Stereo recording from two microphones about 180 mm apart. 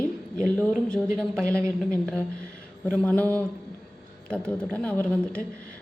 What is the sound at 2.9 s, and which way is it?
Speech, 10° left (ahead or behind).